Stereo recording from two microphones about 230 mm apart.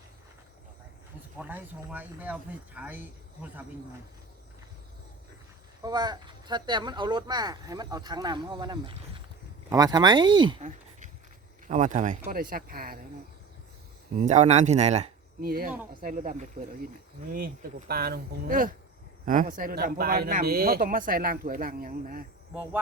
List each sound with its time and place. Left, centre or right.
1.4 s speech: centre
5.8 s speech: centre
11.7 s speech: right
14.2 s speech: right